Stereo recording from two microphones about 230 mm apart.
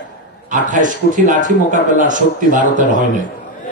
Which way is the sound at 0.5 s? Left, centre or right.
Right.